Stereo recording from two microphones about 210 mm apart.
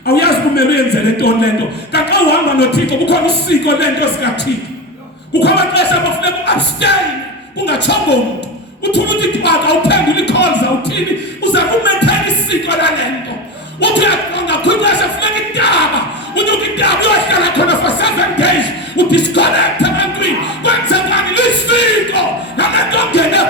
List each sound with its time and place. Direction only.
0.0 s a sound: 50° left (ahead or behind)
1.9 s speech: 55° left (ahead or behind)
5.4 s speech: 55° left (ahead or behind)
11.5 s music: 55° left (ahead or behind)
13.8 s a sound: 55° left (ahead or behind)
18.9 s music: 55° left (ahead or behind)